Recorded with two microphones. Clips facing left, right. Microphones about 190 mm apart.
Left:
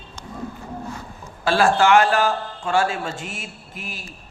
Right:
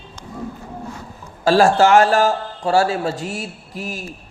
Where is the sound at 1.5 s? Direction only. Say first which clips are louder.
Right 4 dB; 40° right (ahead or behind).